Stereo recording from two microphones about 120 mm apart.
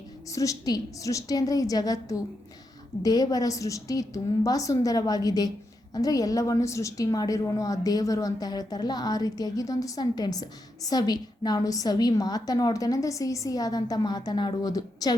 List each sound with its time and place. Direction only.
0.3 s a woman's voice: 30° left (ahead or behind)